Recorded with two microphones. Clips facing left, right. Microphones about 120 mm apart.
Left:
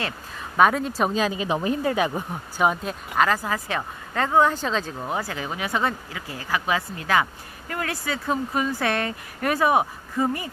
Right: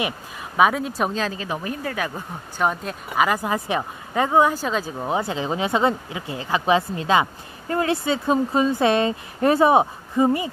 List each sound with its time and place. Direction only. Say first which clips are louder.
0.6 s speech: even; 5° right (ahead or behind); by 2.6 s 20° left (ahead or behind)
2.6 s speech: left 1 dB; centre (ahead or behind)
3.3 s speech: right 2 dB; 20° right (ahead or behind)
5.0 s speech: right 5 dB; 20° right (ahead or behind)